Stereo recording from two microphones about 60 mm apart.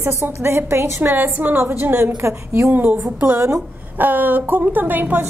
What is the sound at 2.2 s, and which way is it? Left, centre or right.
Speech, right.